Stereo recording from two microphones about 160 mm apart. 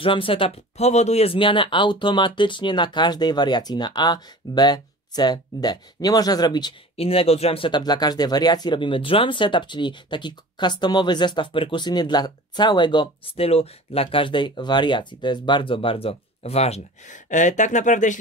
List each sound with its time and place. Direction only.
0.0 s speech: 35° left (ahead or behind); by 18.2 s 50° left (ahead or behind)